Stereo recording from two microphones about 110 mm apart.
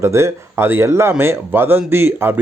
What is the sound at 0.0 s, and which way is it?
Speech, 25° right (ahead or behind).